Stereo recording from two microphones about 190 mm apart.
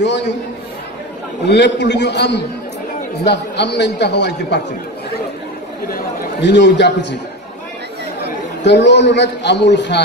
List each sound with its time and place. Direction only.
0.0 s a man's voice: 65° left (ahead or behind)
1.4 s a man's voice: 65° left (ahead or behind)
5.9 s a man's voice: 60° left (ahead or behind)
8.6 s a man's voice: 65° left (ahead or behind)